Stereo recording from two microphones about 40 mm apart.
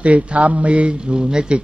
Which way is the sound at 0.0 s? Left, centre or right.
Right.